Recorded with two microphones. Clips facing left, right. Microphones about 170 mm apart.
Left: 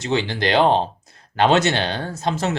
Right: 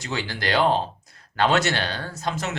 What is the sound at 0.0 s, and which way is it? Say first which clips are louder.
Speech: left 7 dB; 25° left (ahead or behind).